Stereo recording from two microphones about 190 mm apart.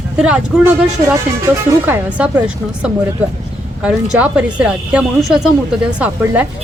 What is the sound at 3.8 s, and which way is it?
A woman's voice, 5° right (ahead or behind).